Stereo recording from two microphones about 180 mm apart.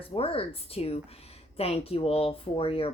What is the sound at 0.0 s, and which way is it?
Speech, 30° left (ahead or behind).